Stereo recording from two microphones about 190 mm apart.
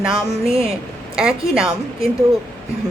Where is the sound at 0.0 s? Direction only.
5° right (ahead or behind).